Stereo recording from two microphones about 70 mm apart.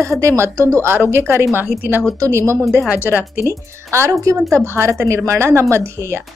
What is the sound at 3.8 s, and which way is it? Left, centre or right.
A woman's voice, right.